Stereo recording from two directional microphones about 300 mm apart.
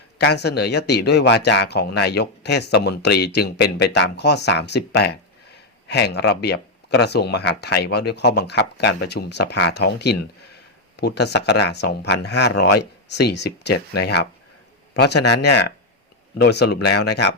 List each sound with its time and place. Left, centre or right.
0.2 s speech: left